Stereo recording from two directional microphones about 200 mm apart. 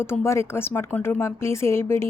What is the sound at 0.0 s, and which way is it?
A woman's voice, 10° left (ahead or behind).